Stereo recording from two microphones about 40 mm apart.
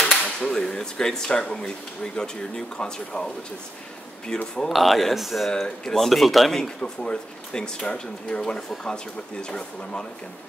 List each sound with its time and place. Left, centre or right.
0.0 s cap gun: left
0.4 s speech: centre
4.3 s speech: left
4.6 s speech: centre
6.5 s speech: centre